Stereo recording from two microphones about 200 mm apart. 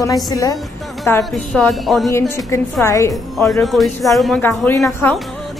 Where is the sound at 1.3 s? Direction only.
Centre (ahead or behind).